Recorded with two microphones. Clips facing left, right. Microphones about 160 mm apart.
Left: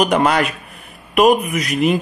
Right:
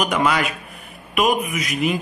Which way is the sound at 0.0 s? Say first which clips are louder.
Left 5 dB; 40° left (ahead or behind).